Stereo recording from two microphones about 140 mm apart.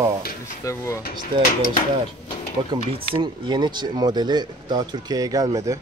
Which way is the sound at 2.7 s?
40° right (ahead or behind).